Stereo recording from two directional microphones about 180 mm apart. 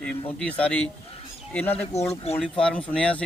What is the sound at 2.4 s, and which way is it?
Speech, 5° left (ahead or behind).